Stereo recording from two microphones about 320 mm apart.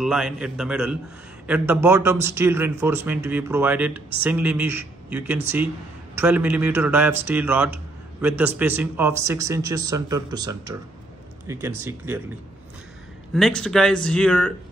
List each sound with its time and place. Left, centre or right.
0.0 s a man's voice: centre
13.3 s speech: centre